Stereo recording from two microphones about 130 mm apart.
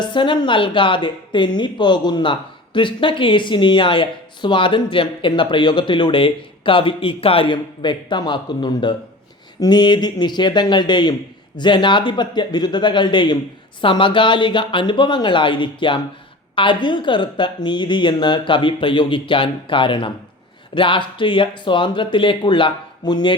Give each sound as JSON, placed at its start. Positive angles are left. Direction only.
{"t": 0.0, "sound": "a woman's voice", "side_deg": 35}